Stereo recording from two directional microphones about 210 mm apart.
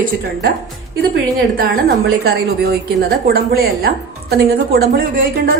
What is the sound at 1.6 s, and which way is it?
A woman's voice, 50° right (ahead or behind).